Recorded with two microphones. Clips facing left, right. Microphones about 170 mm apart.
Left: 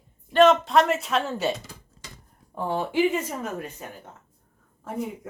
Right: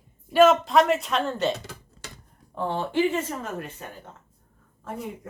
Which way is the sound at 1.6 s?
75° right (ahead or behind).